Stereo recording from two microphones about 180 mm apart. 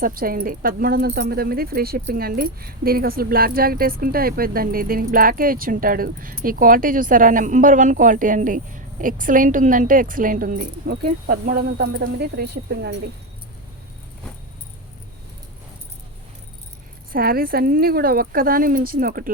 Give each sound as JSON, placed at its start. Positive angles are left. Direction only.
{"t": 0.0, "sound": "speech", "side_deg": -55}
{"t": 17.1, "sound": "speech", "side_deg": -55}